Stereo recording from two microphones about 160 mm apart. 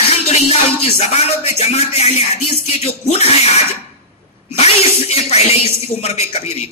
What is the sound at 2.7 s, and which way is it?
Speech, 40° left (ahead or behind).